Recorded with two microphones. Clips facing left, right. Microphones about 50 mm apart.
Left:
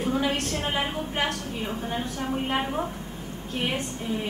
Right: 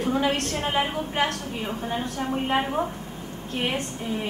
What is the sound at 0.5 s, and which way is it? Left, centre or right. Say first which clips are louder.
A woman's voice: right 2 dB; centre.